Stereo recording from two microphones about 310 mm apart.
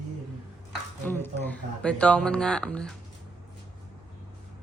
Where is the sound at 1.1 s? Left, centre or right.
Centre.